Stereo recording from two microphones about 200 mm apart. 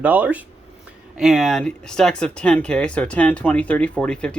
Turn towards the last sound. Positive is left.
turn(degrees=5)  # may be behind; listen again after turning